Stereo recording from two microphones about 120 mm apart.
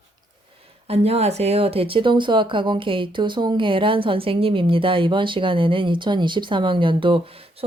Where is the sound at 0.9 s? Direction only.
60° right (ahead or behind).